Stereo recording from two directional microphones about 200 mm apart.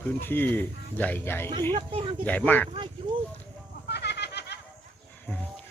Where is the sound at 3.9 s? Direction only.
55° left (ahead or behind).